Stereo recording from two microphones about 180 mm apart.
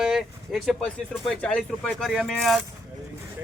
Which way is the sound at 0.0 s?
Centre (ahead or behind).